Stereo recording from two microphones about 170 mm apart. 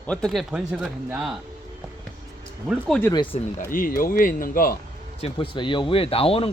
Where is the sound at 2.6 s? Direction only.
5° right (ahead or behind).